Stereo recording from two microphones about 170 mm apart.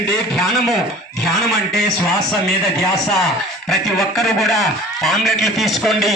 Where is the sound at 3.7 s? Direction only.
Centre (ahead or behind).